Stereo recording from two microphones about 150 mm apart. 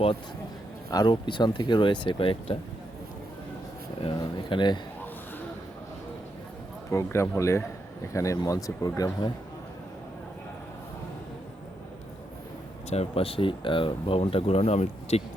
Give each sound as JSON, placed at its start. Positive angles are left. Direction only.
{"t": 0.9, "sound": "speech", "side_deg": 25}
{"t": 4.0, "sound": "speech", "side_deg": 30}
{"t": 6.9, "sound": "speech", "side_deg": 20}
{"t": 12.9, "sound": "speech", "side_deg": 40}